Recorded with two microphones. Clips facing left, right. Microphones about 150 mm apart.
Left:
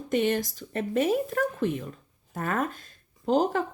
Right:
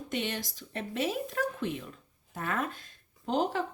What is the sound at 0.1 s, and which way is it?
Speech, 45° left (ahead or behind).